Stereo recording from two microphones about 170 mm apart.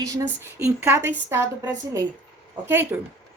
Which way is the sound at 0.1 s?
20° right (ahead or behind).